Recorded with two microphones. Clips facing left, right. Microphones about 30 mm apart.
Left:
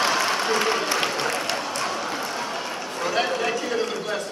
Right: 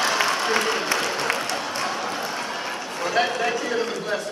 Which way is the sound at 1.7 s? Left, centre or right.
Centre.